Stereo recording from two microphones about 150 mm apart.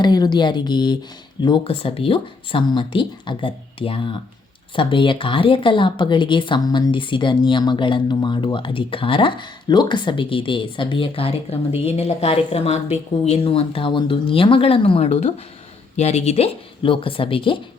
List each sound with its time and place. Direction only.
0.0 s speech: 30° left (ahead or behind)